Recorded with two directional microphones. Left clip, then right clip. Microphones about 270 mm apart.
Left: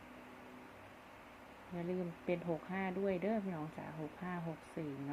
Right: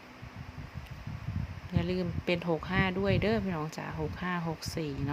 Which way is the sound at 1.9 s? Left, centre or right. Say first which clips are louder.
Right 7 dB; right.